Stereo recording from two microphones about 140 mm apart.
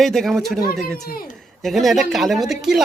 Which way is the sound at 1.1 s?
90° left.